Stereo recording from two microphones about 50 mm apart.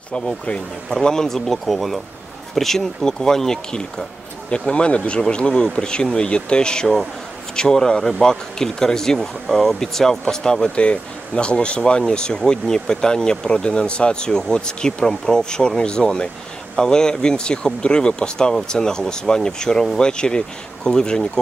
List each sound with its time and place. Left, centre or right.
0.1 s speech: centre